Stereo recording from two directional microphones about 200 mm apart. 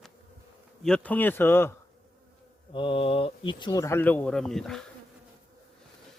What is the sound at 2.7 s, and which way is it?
Speech, 25° left (ahead or behind).